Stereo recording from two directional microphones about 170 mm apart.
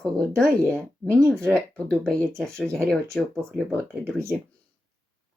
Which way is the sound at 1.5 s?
5° left (ahead or behind).